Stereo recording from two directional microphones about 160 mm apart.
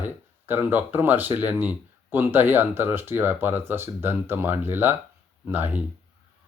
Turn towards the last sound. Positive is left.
turn(degrees=-10)  # may be behind; listen again after turning